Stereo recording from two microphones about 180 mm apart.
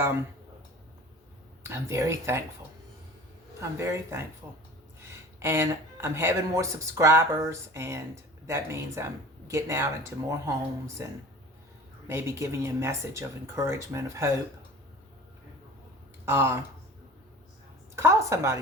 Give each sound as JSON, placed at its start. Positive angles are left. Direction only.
{"t": 1.6, "sound": "speech", "side_deg": -15}
{"t": 3.6, "sound": "speech", "side_deg": -15}
{"t": 16.2, "sound": "speech", "side_deg": -10}
{"t": 17.9, "sound": "a woman's voice", "side_deg": -15}